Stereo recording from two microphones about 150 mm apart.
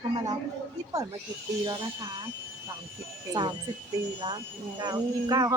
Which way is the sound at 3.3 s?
30° right (ahead or behind).